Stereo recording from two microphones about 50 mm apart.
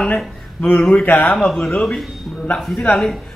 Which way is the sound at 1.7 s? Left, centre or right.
Centre.